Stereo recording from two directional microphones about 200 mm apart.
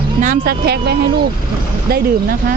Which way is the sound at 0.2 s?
45° right (ahead or behind).